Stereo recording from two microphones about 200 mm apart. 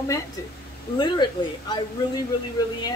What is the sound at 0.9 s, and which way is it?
Speech, 20° left (ahead or behind).